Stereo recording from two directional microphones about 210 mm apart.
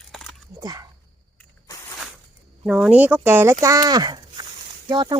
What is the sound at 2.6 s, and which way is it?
Speech, 5° right (ahead or behind).